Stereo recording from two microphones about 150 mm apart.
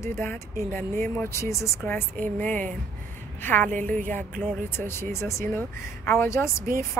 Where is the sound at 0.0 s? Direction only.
15° left (ahead or behind).